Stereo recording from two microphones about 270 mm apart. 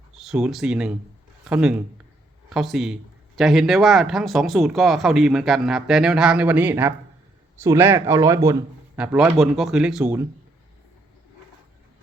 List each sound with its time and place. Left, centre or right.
0.2 s speech: centre